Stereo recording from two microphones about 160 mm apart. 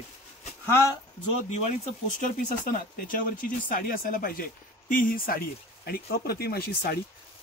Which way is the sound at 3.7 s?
60° left (ahead or behind).